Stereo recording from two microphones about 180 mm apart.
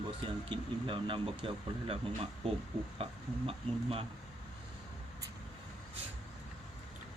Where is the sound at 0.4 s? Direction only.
30° right (ahead or behind).